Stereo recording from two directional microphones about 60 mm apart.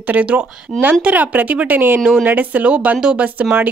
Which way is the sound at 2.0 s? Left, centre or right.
Centre.